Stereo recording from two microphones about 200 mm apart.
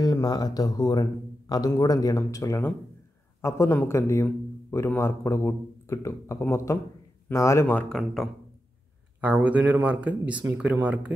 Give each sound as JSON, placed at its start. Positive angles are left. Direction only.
{"t": 0.0, "sound": "a man's voice", "side_deg": 20}